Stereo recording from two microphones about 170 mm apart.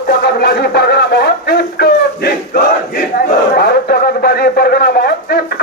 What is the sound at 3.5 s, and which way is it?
Radio, 65° left (ahead or behind).